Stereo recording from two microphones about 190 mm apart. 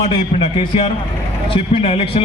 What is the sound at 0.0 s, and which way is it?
A man's voice, 30° left (ahead or behind).